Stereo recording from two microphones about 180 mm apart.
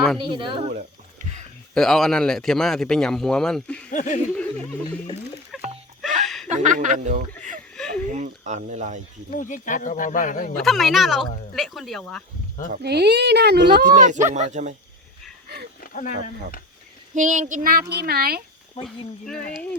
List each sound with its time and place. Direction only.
0.2 s speech: 30° right (ahead or behind)
1.7 s speech: centre (ahead or behind)
3.9 s speech: 45° left (ahead or behind)
4.4 s a sound: 5° left (ahead or behind)
6.0 s a sound: centre (ahead or behind)
6.5 s speech: 45° right (ahead or behind)
9.3 s speech: 45° left (ahead or behind)
10.6 s speech: centre (ahead or behind)
12.8 s speech: 65° right (ahead or behind)
13.8 s speech: 45° right (ahead or behind)
15.8 s speech: 50° left (ahead or behind)
17.2 s speech: 45° right (ahead or behind)